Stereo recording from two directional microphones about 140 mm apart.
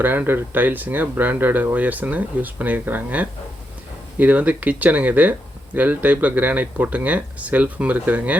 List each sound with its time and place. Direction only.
0.0 s speech: 15° right (ahead or behind)